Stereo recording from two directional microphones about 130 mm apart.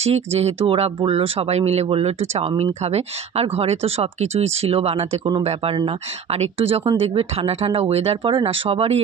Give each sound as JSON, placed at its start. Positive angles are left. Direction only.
{"t": 0.0, "sound": "speech", "side_deg": -55}